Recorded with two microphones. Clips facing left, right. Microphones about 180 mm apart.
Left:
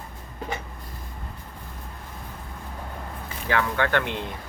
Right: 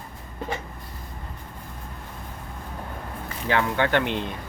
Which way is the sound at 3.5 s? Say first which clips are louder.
Right 1 dB; 20° right (ahead or behind).